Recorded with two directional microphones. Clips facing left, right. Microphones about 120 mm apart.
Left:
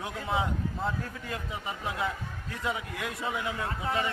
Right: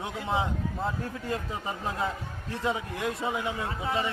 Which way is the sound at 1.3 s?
30° right (ahead or behind).